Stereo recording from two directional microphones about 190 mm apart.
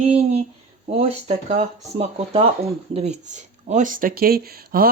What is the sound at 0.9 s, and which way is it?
Speech, 35° right (ahead or behind).